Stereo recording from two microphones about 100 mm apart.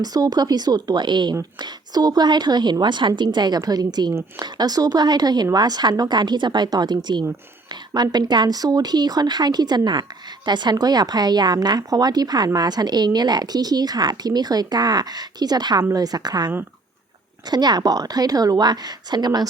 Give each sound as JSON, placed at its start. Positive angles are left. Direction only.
{"t": 0.0, "sound": "a woman's voice", "side_deg": -40}
{"t": 17.5, "sound": "speech", "side_deg": -45}